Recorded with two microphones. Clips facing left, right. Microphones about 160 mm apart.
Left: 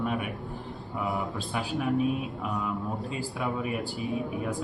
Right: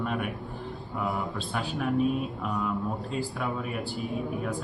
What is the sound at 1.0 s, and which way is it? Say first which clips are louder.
Speech: even; 5° left (ahead or behind).